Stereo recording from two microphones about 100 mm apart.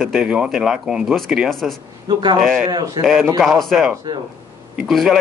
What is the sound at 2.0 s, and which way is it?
Speech, 45° right (ahead or behind).